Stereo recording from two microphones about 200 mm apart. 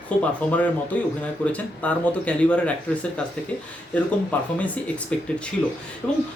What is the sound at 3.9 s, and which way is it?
Speech, 5° left (ahead or behind).